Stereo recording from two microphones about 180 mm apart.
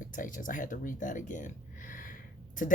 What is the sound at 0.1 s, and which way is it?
Speech, 45° left (ahead or behind).